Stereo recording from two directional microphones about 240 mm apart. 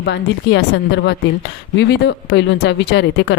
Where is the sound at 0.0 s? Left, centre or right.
Left.